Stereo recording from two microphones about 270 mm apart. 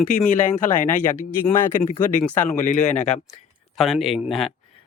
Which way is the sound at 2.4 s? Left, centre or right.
Left.